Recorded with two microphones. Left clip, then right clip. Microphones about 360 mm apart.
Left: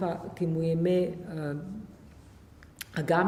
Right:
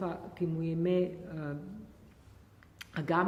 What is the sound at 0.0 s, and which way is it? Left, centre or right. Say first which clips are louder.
A woman's voice: left 4 dB; right.